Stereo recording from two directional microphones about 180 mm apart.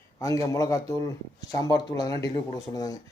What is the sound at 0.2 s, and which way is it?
Speech, 20° left (ahead or behind).